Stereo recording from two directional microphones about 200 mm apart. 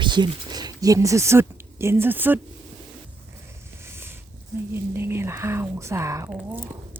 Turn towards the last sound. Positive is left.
turn(degrees=-5)  # may be behind; listen again after turning